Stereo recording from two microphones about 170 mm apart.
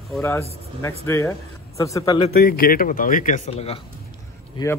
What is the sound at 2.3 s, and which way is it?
A man's voice, 60° left (ahead or behind).